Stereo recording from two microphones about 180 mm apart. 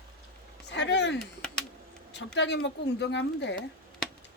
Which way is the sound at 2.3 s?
75° left (ahead or behind).